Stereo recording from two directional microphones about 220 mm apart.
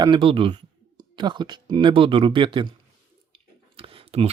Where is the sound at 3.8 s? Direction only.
25° right (ahead or behind).